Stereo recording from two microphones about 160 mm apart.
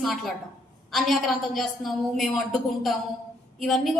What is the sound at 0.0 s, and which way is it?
A woman's voice, centre (ahead or behind).